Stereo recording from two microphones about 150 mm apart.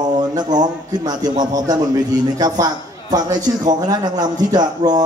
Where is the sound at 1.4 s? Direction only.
25° right (ahead or behind).